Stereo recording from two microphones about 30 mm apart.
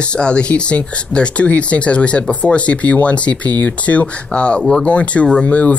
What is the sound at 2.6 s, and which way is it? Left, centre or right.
Speech, left.